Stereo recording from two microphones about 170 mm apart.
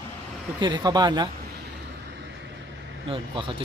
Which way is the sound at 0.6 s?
25° right (ahead or behind).